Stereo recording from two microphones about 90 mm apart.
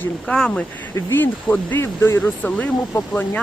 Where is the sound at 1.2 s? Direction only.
25° left (ahead or behind).